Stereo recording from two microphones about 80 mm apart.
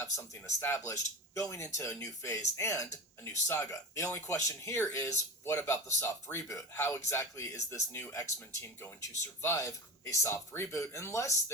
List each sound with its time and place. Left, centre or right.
0.0 s speech: left